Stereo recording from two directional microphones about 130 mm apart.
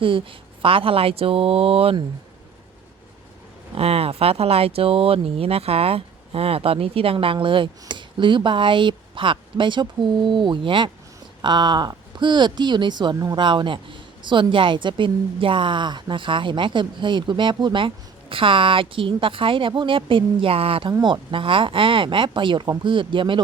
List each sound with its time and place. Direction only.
0.0 s speech: 40° right (ahead or behind)
3.8 s speech: 50° right (ahead or behind)